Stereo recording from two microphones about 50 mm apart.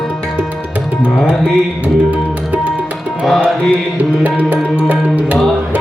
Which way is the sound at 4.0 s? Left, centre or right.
Right.